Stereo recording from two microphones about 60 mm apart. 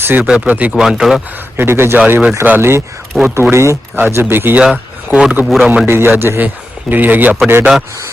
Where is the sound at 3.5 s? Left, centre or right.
Right.